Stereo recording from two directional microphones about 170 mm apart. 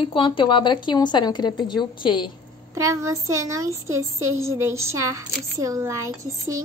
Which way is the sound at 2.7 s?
15° right (ahead or behind).